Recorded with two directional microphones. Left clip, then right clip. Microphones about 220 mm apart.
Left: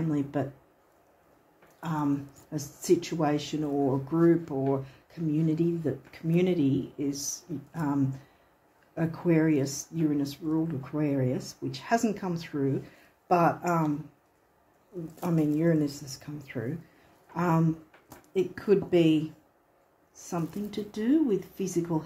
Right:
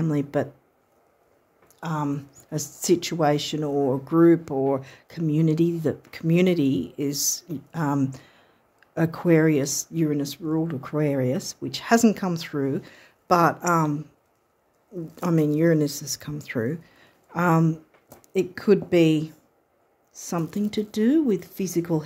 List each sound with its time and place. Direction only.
0.1 s speech: 55° right (ahead or behind)
1.8 s speech: 50° right (ahead or behind)
15.1 s speech: 50° right (ahead or behind)